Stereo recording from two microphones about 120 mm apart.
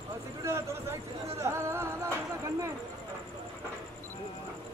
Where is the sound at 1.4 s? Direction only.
25° right (ahead or behind).